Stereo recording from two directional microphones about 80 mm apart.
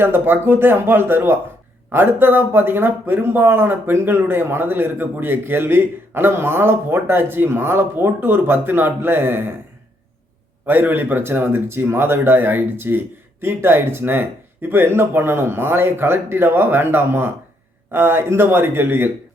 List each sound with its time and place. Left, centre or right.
0.0 s speech: right
10.7 s speech: right